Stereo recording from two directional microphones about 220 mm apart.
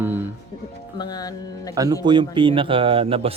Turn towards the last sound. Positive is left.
turn(degrees=-25)  # may be behind; listen again after turning